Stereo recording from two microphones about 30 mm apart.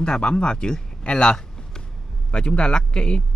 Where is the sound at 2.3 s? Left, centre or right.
Left.